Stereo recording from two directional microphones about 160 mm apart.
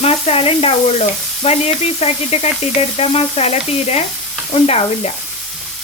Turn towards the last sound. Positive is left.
turn(degrees=40)  # may be behind; listen again after turning